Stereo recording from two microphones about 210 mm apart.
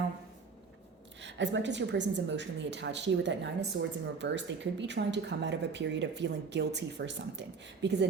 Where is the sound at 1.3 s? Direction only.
60° right (ahead or behind).